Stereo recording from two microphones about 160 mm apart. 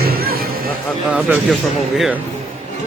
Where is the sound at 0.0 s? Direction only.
70° right (ahead or behind).